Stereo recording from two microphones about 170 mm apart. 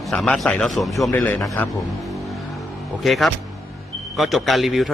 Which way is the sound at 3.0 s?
Centre (ahead or behind).